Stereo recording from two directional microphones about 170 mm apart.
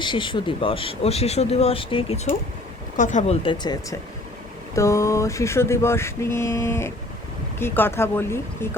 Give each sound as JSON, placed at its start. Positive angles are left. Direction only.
{"t": 0.0, "sound": "speech", "side_deg": 30}
{"t": 3.0, "sound": "speech", "side_deg": 45}
{"t": 3.4, "sound": "speech", "side_deg": 25}
{"t": 4.7, "sound": "mantra", "side_deg": 15}